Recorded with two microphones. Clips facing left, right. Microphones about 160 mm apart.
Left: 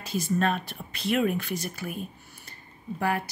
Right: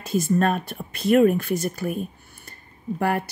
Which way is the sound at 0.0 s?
50° right (ahead or behind).